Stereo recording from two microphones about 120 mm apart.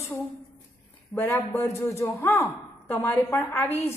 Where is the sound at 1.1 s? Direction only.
20° left (ahead or behind).